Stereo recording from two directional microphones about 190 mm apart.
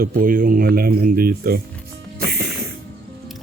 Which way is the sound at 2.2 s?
55° right (ahead or behind).